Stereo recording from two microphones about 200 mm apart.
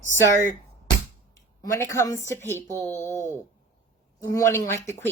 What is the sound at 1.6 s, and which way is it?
Speech, 15° left (ahead or behind).